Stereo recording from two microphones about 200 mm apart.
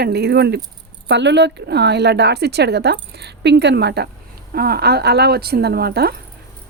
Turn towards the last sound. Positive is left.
turn(degrees=-50)  # may be behind; listen again after turning